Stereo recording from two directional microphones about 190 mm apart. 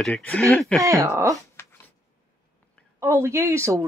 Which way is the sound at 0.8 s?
15° right (ahead or behind).